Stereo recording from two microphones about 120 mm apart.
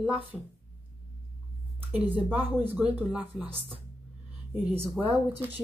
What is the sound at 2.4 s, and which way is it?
Speech, 15° right (ahead or behind).